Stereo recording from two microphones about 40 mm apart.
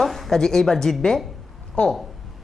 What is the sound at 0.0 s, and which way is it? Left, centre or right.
Speech, centre.